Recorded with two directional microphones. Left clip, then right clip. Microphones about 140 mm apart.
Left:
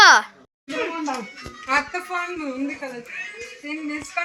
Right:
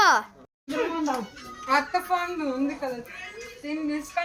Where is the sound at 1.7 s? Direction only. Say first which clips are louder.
Even; centre (ahead or behind).